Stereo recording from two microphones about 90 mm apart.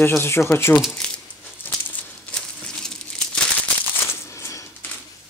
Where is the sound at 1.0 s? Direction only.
10° left (ahead or behind).